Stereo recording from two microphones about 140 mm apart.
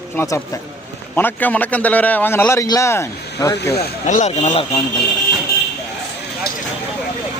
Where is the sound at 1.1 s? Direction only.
10° left (ahead or behind).